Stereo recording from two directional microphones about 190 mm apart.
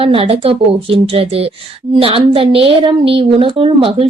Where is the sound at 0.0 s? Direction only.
30° right (ahead or behind).